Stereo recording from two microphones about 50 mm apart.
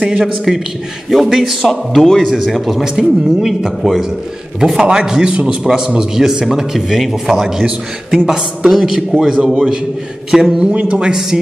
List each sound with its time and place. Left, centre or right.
0.5 s speech: centre
1.6 s speech: centre
4.7 s a man's voice: centre
10.7 s a man's voice: right